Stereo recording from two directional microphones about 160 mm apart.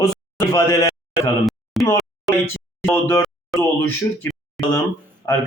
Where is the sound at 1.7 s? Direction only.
Centre (ahead or behind).